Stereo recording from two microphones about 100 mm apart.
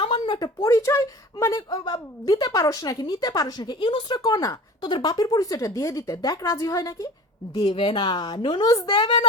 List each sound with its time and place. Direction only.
0.0 s a sound: 50° left (ahead or behind)
0.3 s a woman's voice: 35° left (ahead or behind)
1.7 s a woman's voice: 45° left (ahead or behind)
4.2 s a woman's voice: 35° left (ahead or behind)
7.6 s a woman's voice: 60° left (ahead or behind); by 9.0 s 45° left (ahead or behind)
9.0 s a child's voice: 55° left (ahead or behind)